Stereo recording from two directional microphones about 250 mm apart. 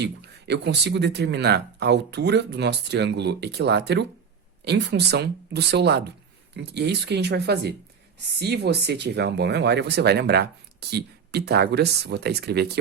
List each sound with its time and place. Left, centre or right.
0.0 s speech: right